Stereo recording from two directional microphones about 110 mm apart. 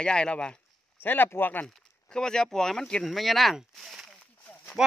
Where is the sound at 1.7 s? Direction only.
5° left (ahead or behind).